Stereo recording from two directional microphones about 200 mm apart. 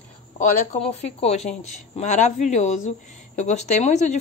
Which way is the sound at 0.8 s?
30° left (ahead or behind).